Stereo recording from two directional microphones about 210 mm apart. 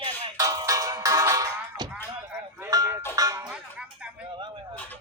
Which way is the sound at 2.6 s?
15° right (ahead or behind).